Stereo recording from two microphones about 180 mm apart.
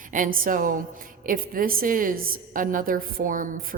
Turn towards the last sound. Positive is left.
turn(degrees=-50)  # may be behind; listen again after turning